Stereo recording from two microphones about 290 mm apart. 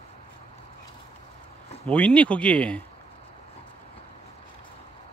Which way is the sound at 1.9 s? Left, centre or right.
Centre.